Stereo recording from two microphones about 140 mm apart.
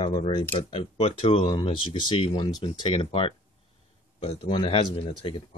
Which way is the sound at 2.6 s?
40° left (ahead or behind).